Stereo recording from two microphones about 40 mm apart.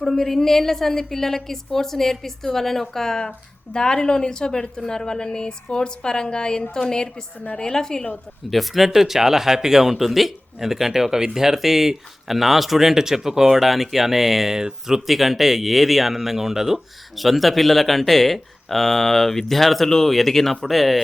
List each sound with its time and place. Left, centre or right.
0.0 s a woman's voice: centre
8.4 s speech: centre